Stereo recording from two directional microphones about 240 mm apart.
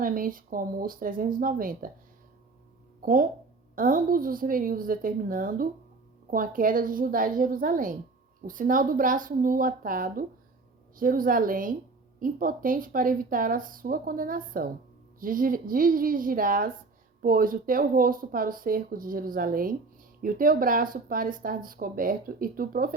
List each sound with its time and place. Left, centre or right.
0.0 s speech: right
3.0 s speech: right